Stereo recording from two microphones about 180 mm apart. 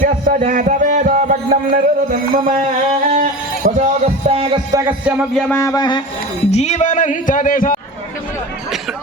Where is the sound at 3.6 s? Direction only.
40° right (ahead or behind).